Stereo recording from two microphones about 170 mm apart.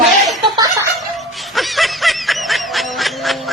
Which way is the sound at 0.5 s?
20° right (ahead or behind).